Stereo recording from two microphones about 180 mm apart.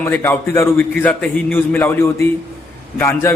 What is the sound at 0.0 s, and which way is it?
A man's voice, 10° left (ahead or behind).